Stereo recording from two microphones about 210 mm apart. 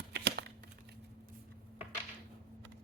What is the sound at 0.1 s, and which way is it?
Crumpling, 50° right (ahead or behind).